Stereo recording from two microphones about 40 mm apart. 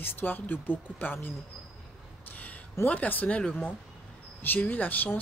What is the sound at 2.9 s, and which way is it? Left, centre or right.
Speech, left.